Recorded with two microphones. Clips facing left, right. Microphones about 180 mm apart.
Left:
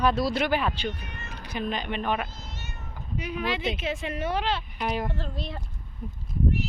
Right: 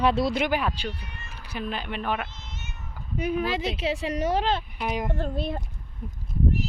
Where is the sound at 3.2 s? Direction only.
50° right (ahead or behind).